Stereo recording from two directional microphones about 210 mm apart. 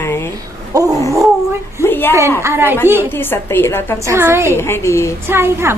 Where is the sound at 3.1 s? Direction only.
10° left (ahead or behind).